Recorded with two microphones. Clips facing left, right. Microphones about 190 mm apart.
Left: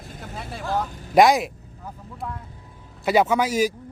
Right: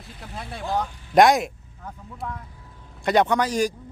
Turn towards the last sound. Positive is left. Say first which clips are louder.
# left 1 dB
turn(degrees=5)  # may be behind; listen again after turning